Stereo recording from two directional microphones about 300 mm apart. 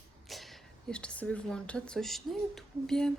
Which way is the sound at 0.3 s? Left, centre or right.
Centre.